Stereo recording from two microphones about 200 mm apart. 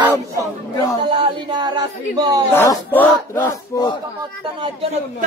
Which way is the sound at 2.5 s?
10° left (ahead or behind).